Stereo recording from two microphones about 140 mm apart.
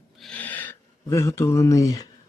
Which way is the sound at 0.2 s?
10° left (ahead or behind).